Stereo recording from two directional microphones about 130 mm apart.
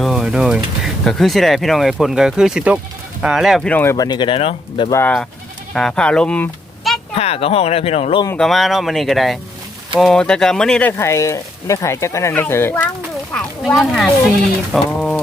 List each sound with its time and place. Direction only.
0.0 s pigeon: centre (ahead or behind)
1.0 s speech: centre (ahead or behind)
3.7 s speech: 15° left (ahead or behind)
3.9 s speech: 30° left (ahead or behind)
4.9 s speech: 20° left (ahead or behind)
5.7 s speech: 5° left (ahead or behind)
7.1 s speech: 50° left (ahead or behind)
8.4 s speech: centre (ahead or behind); by 12.9 s 15° left (ahead or behind)
13.3 s speech: centre (ahead or behind)